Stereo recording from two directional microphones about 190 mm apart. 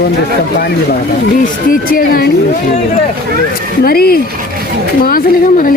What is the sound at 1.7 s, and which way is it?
Speech, 50° left (ahead or behind).